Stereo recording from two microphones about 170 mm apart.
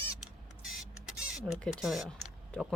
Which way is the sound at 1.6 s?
Centre (ahead or behind).